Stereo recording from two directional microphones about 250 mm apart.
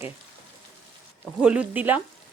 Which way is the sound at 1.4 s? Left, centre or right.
Centre.